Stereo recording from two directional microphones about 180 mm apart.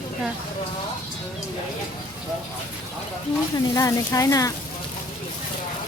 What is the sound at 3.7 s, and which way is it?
Speech, 20° left (ahead or behind).